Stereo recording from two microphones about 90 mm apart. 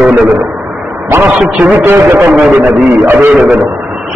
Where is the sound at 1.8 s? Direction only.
25° right (ahead or behind).